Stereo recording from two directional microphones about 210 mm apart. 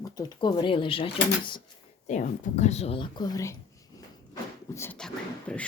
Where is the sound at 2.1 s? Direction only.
35° left (ahead or behind); by 5.7 s 5° left (ahead or behind).